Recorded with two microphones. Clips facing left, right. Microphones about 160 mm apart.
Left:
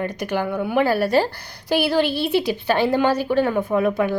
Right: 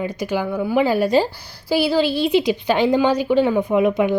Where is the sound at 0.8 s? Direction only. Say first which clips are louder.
Right 1 dB; 15° right (ahead or behind).